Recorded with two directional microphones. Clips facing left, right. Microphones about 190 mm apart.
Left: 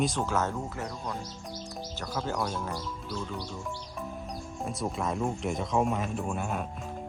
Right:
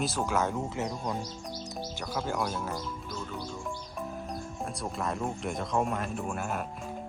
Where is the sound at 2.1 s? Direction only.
5° right (ahead or behind).